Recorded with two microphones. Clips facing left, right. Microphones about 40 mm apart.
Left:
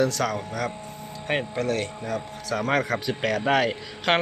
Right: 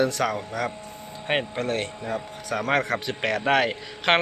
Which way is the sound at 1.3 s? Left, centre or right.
Right.